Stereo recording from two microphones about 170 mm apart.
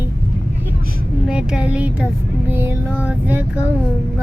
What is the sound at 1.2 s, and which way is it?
Child singing, 5° right (ahead or behind).